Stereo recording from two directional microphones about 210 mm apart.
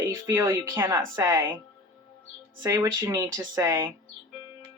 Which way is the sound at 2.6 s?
15° right (ahead or behind).